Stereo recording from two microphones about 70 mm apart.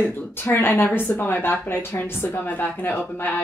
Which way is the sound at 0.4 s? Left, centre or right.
Left.